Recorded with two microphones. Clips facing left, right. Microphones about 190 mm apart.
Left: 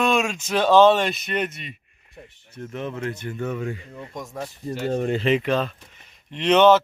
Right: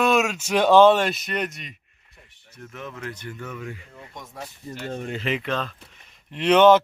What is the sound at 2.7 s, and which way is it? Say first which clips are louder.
Speech: left 6 dB; 25° left (ahead or behind).